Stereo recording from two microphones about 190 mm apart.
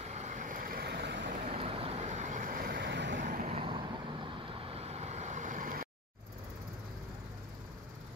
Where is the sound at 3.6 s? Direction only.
25° right (ahead or behind); by 5.9 s 45° right (ahead or behind).